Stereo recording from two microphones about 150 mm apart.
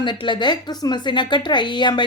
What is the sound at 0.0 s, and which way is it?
A woman's voice, 30° left (ahead or behind).